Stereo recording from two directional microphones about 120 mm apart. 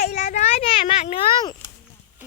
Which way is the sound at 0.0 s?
85° left.